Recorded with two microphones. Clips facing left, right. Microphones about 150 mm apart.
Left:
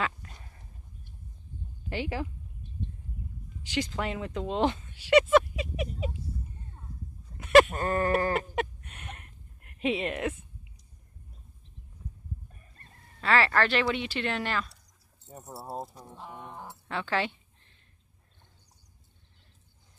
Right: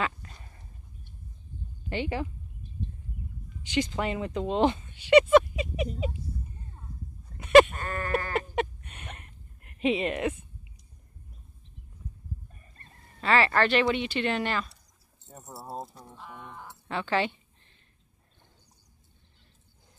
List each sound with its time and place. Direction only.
0.0 s a sound: centre (ahead or behind)
1.9 s speech: 5° left (ahead or behind)
3.6 s speech: centre (ahead or behind)
7.3 s sheep: centre (ahead or behind)
7.7 s bleat: 35° left (ahead or behind)
8.4 s a sound: centre (ahead or behind)
13.2 s speech: centre (ahead or behind)
15.2 s speech: 10° left (ahead or behind)
16.3 s speech: 30° left (ahead or behind)
16.8 s speech: centre (ahead or behind)